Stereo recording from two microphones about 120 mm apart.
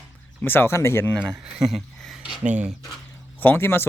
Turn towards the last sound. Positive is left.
turn(degrees=20)  # may be behind; listen again after turning